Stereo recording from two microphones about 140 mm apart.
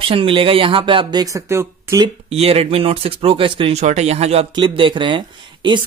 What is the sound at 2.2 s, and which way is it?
Speech, 45° right (ahead or behind).